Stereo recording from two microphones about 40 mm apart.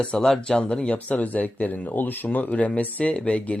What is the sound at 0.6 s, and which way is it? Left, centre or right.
Speech, left.